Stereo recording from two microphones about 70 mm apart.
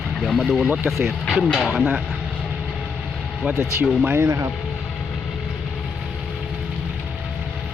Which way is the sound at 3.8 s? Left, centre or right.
Right.